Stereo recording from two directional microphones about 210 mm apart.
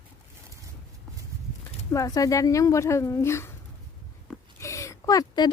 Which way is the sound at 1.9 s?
15° left (ahead or behind).